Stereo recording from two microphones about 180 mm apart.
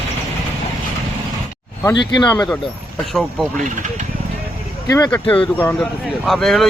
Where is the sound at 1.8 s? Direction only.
25° left (ahead or behind).